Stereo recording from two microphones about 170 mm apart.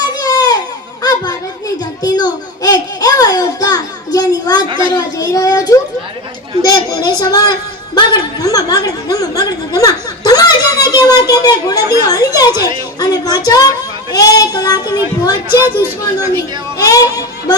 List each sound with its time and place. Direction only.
0.2 s a sound: 20° left (ahead or behind)
7.9 s chuckle: 20° left (ahead or behind)
12.0 s a sound: 20° left (ahead or behind)
13.0 s speech: 20° left (ahead or behind)
15.4 s speech: 15° right (ahead or behind)
16.7 s speech: 20° left (ahead or behind)